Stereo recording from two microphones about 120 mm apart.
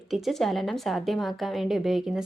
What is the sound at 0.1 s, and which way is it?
A woman's voice, centre (ahead or behind).